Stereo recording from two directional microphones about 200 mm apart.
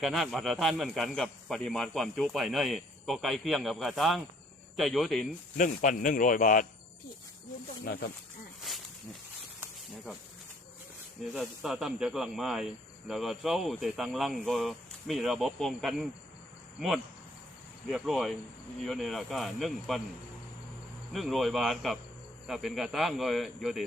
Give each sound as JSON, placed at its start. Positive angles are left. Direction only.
{"t": 0.0, "sound": "speech", "side_deg": 0}
{"t": 5.5, "sound": "speech", "side_deg": 40}
{"t": 7.9, "sound": "speech", "side_deg": 50}
{"t": 11.3, "sound": "speech", "side_deg": 0}
{"t": 17.8, "sound": "speech", "side_deg": 0}
{"t": 21.1, "sound": "speech", "side_deg": 0}